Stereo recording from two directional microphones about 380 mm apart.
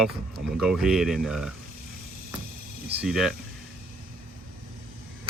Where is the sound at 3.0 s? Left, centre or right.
Centre.